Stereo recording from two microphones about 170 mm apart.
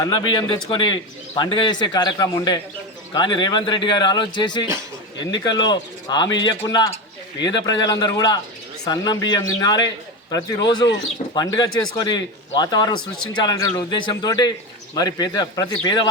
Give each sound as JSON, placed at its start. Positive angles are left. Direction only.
{"t": 0.0, "sound": "a man's voice", "side_deg": 25}